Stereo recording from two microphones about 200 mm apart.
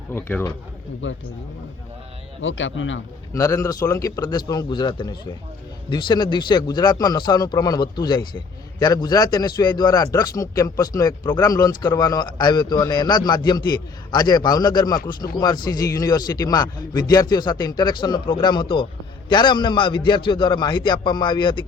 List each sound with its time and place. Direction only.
0.1 s speech: 10° left (ahead or behind)
1.0 s speech: 70° left (ahead or behind)
2.4 s speech: 70° left (ahead or behind)
3.3 s a man's voice: 15° left (ahead or behind)